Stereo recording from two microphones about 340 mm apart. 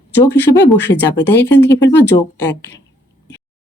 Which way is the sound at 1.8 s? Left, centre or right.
Left.